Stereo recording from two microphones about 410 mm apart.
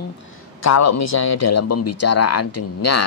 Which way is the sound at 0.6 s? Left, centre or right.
Left.